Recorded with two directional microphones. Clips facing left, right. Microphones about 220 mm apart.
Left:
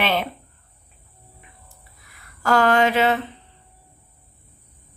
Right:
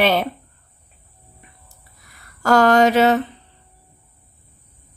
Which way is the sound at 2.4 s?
40° right (ahead or behind).